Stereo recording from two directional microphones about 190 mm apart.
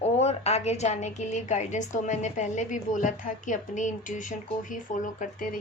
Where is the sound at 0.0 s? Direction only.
35° left (ahead or behind).